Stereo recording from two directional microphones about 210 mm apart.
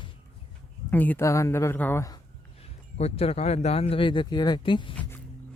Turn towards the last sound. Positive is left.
turn(degrees=25)  # may be behind; listen again after turning